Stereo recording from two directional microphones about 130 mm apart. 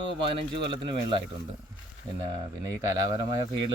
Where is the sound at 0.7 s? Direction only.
40° right (ahead or behind).